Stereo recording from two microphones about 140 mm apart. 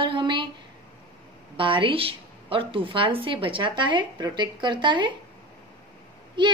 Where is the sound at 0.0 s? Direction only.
35° right (ahead or behind).